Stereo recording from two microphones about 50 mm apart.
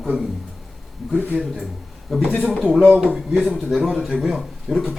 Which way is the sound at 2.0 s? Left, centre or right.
Centre.